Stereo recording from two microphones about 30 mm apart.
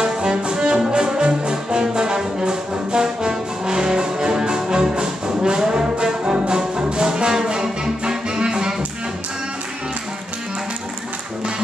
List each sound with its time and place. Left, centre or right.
0.0 s music: right
0.8 s brass instrument: right
6.2 s music: right